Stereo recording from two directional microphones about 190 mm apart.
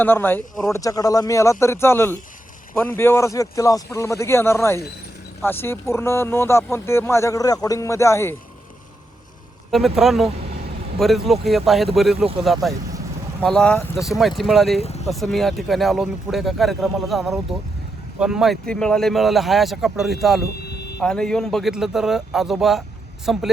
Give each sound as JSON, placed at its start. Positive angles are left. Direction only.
{"t": 0.0, "sound": "speech", "side_deg": 10}
{"t": 9.7, "sound": "speech", "side_deg": 0}
{"t": 12.2, "sound": "speech", "side_deg": -30}
{"t": 12.6, "sound": "speech", "side_deg": 0}
{"t": 14.8, "sound": "speech", "side_deg": 35}
{"t": 15.0, "sound": "speech", "side_deg": 0}